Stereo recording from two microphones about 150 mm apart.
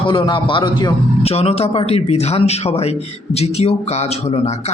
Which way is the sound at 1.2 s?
40° left (ahead or behind).